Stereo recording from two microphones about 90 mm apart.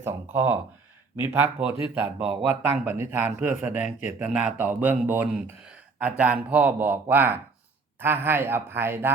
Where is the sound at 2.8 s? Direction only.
25° right (ahead or behind).